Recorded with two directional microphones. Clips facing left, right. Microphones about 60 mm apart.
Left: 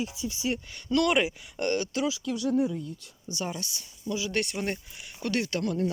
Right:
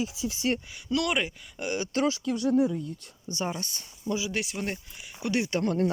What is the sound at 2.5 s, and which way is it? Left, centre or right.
Speech, right.